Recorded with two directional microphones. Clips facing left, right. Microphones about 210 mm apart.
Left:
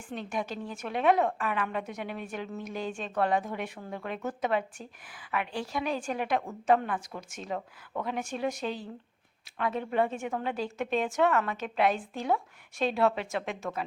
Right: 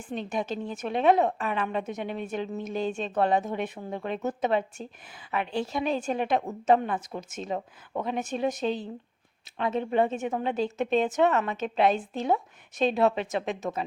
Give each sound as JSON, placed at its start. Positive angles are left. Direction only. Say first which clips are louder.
{"t": 0.0, "sound": "a woman's voice", "louder": "right 3 dB", "side_deg": -20}